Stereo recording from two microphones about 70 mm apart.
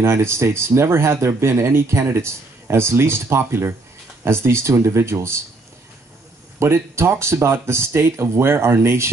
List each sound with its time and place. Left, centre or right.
0.0 s speech: right
6.6 s speech: right